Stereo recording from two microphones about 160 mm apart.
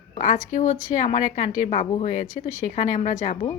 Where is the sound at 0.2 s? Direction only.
55° left (ahead or behind).